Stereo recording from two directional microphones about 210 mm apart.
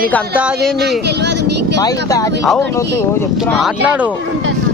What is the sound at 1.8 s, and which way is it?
Speech, 15° left (ahead or behind).